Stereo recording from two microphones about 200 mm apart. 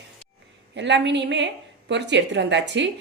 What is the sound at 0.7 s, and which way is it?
A woman's voice, 60° right (ahead or behind).